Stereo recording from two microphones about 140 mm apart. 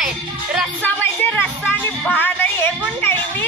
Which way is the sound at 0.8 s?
15° left (ahead or behind).